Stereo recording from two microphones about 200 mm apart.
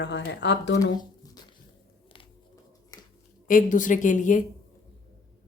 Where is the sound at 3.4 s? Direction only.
40° left (ahead or behind).